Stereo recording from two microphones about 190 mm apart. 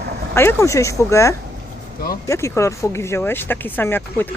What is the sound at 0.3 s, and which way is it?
Speech, 15° left (ahead or behind).